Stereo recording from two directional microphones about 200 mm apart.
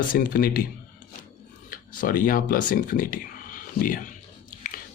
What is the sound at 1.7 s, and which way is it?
Speech, 45° left (ahead or behind).